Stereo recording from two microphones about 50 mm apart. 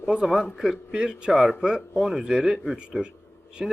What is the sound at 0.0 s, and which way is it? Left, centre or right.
A man's voice, centre.